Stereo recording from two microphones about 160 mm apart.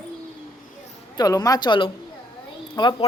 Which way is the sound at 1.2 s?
25° left (ahead or behind).